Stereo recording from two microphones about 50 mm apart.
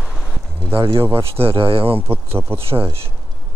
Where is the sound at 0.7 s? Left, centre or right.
Right.